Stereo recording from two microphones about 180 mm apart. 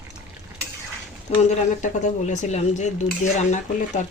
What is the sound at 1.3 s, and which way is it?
Speech, 35° left (ahead or behind).